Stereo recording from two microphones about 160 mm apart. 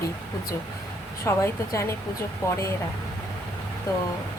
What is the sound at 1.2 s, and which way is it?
A woman's voice, 15° left (ahead or behind).